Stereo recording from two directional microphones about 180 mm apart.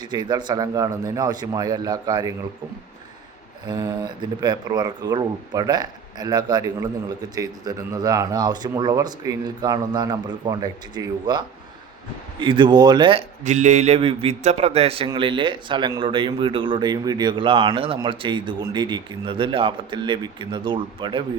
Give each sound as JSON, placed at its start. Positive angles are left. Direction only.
{"t": 0.0, "sound": "a man's voice", "side_deg": -25}
{"t": 3.7, "sound": "a man's voice", "side_deg": -20}
{"t": 13.4, "sound": "a man's voice", "side_deg": -40}